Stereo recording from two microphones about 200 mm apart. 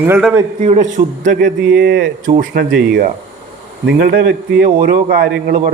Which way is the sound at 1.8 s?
50° right (ahead or behind).